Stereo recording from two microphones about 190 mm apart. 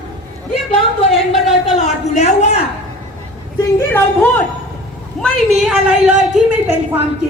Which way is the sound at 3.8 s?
10° left (ahead or behind).